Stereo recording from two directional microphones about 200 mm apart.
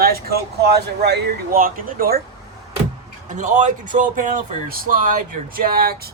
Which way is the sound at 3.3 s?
35° right (ahead or behind).